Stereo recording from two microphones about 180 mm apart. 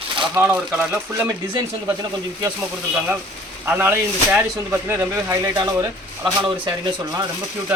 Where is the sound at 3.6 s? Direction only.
10° right (ahead or behind).